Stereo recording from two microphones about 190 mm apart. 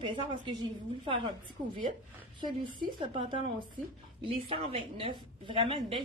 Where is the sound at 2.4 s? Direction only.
25° right (ahead or behind).